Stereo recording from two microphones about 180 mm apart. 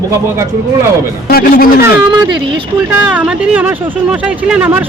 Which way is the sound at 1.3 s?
55° left (ahead or behind).